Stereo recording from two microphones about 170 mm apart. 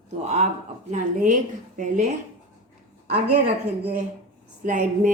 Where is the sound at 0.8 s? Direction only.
50° right (ahead or behind).